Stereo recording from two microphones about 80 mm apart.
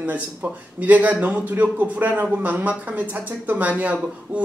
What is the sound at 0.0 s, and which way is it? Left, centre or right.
Speech, centre.